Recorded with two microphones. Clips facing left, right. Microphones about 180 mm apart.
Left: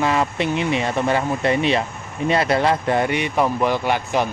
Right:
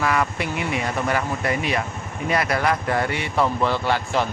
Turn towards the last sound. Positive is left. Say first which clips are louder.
# left 2 dB
turn(degrees=15)  # may be behind; listen again after turning